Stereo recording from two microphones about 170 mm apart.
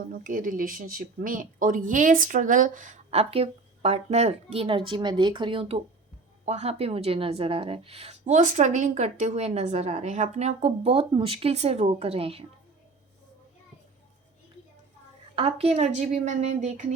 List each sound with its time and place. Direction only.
0.1 s speech: 55° right (ahead or behind); by 12.5 s 35° right (ahead or behind)
15.4 s speech: 35° right (ahead or behind)